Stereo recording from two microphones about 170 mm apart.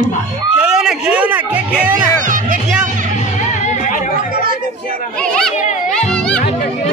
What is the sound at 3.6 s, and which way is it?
Music, 45° left (ahead or behind).